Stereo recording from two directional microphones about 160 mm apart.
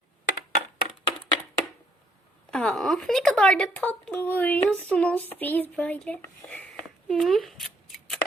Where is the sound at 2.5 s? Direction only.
5° left (ahead or behind).